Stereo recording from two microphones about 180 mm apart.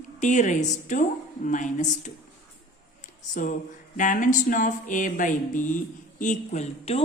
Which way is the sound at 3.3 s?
45° left (ahead or behind).